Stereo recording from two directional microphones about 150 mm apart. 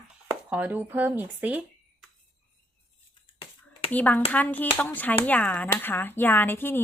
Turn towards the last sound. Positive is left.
turn(degrees=15)  # may be behind; listen again after turning